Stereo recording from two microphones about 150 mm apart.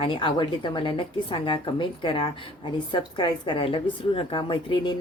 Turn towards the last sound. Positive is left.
turn(degrees=30)  # may be behind; listen again after turning